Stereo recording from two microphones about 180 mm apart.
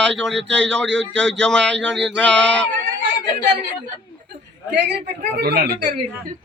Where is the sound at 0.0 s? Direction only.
5° left (ahead or behind).